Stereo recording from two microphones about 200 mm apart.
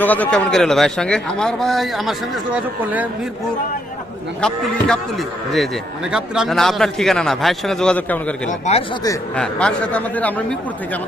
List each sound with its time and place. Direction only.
0.0 s a man's voice: 10° left (ahead or behind); by 3.1 s 5° right (ahead or behind)
4.4 s a man's voice: 5° left (ahead or behind)
6.1 s a man's voice: 5° right (ahead or behind)
8.4 s speech: 35° left (ahead or behind)
9.3 s a man's voice: 5° left (ahead or behind)